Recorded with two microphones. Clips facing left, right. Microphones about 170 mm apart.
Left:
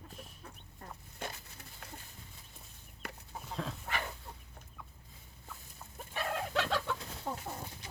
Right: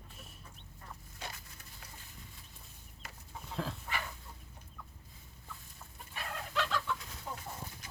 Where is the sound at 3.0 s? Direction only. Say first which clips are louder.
Left 7 dB; 60° left (ahead or behind).